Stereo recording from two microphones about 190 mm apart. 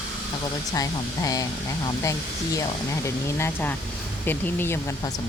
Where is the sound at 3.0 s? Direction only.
10° left (ahead or behind).